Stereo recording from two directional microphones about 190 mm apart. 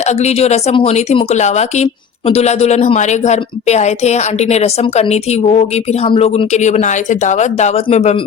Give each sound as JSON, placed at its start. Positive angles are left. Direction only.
{"t": 0.0, "sound": "speech", "side_deg": 35}